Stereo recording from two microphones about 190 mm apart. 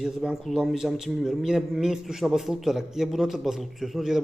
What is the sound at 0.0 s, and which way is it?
A man's voice, centre (ahead or behind).